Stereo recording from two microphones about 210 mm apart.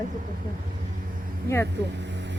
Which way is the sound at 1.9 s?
60° right (ahead or behind).